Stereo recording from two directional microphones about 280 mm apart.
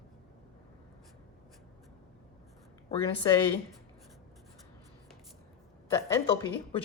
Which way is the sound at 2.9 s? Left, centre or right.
Centre.